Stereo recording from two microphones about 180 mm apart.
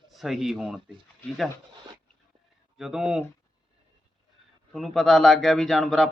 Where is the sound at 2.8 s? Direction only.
5° right (ahead or behind).